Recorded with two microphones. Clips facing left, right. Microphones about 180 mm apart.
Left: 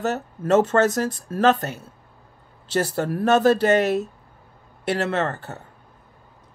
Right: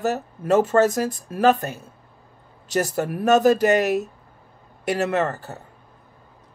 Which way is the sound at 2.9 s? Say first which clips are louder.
Right 1 dB; 15° right (ahead or behind).